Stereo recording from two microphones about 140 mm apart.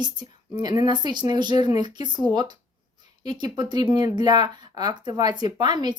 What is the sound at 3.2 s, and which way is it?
Speech, 30° right (ahead or behind).